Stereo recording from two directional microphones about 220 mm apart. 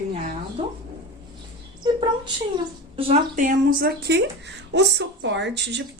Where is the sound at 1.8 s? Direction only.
20° right (ahead or behind).